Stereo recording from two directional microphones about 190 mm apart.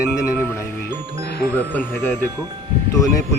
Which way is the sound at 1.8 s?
10° left (ahead or behind).